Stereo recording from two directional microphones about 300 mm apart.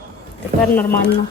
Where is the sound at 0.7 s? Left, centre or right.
Centre.